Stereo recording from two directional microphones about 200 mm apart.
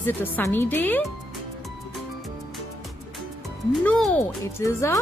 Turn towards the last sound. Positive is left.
turn(degrees=15)  # may be behind; listen again after turning